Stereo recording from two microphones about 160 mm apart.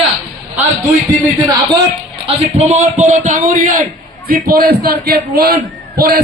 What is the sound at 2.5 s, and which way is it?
A man's voice, 45° right (ahead or behind).